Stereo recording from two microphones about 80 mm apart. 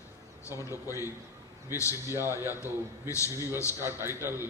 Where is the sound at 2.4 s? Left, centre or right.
Left.